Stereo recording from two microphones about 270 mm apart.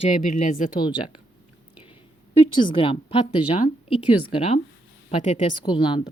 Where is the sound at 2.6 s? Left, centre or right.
Centre.